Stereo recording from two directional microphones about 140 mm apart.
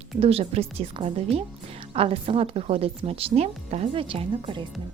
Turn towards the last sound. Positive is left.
turn(degrees=-35)  # may be behind; listen again after turning